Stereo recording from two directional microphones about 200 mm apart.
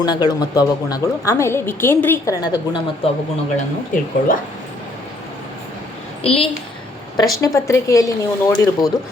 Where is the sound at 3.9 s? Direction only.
40° left (ahead or behind).